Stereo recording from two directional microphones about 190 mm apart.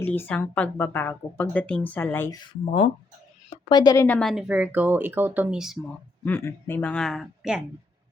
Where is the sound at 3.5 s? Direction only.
25° left (ahead or behind).